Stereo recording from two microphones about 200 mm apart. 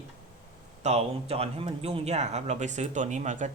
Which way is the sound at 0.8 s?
35° right (ahead or behind).